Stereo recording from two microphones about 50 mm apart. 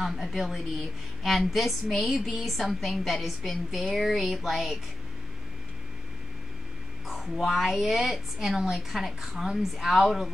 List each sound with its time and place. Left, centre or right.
0.0 s a woman's voice: centre
7.1 s a woman's voice: centre